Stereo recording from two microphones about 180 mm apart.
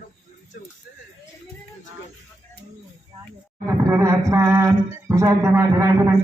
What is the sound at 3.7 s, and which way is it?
Speech, 15° right (ahead or behind).